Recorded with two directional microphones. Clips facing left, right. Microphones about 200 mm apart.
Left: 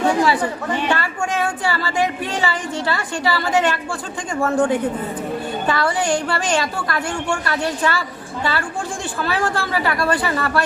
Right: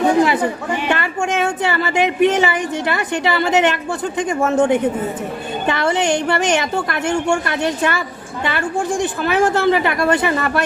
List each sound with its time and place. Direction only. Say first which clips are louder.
0.0 s chatter: right 3 dB; 20° right (ahead or behind)
0.9 s a woman's voice: right 2 dB; 20° right (ahead or behind)